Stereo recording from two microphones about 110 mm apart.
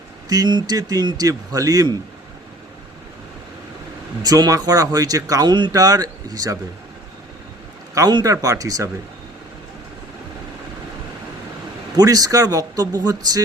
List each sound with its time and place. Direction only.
0.3 s speech: 40° right (ahead or behind)
4.2 s speech: 35° right (ahead or behind)
7.9 s speech: 35° right (ahead or behind)
11.9 s speech: 35° right (ahead or behind)